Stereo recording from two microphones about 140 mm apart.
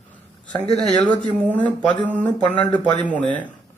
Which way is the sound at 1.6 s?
35° left (ahead or behind).